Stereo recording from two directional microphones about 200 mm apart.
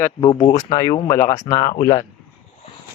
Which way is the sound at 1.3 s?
30° left (ahead or behind).